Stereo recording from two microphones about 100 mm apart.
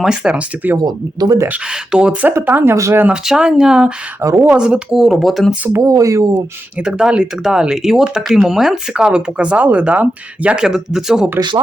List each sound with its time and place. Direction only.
0.0 s speech: 5° right (ahead or behind)
0.8 s speech: 40° right (ahead or behind)
1.5 s speech: 10° right (ahead or behind)
2.3 s speech: 25° right (ahead or behind)
3.1 s speech: 5° right (ahead or behind)
4.2 s speech: 30° right (ahead or behind)
4.4 s speech: 10° right (ahead or behind)
5.6 s speech: 30° right (ahead or behind)
6.7 s speech: 5° right (ahead or behind)
11.3 s speech: 45° right (ahead or behind)